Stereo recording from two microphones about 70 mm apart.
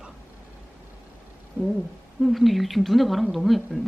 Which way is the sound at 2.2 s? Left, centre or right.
Centre.